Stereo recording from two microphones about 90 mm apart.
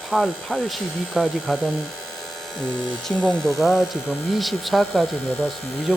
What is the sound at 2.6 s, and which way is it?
Speech, 10° left (ahead or behind).